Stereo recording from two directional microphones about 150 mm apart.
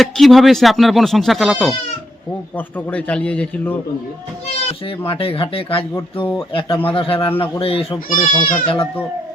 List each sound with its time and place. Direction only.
0.0 s speech: centre (ahead or behind)
5.0 s speech: 35° left (ahead or behind)
8.1 s speech: 55° left (ahead or behind)
8.6 s speech: 35° left (ahead or behind)